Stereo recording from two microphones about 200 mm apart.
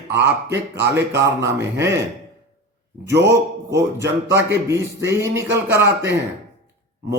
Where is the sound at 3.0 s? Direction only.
60° right (ahead or behind).